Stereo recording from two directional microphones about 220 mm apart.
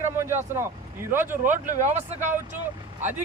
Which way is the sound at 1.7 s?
30° right (ahead or behind).